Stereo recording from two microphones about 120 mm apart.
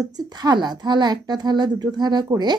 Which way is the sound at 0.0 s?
35° right (ahead or behind).